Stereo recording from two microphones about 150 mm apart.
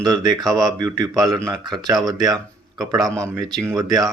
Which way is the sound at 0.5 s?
25° right (ahead or behind).